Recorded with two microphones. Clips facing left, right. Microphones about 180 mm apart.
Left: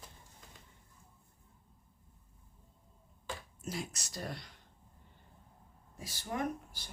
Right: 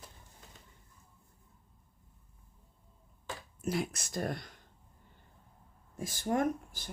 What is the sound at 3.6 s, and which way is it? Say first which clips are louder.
Speech: right 7 dB; 60° right (ahead or behind).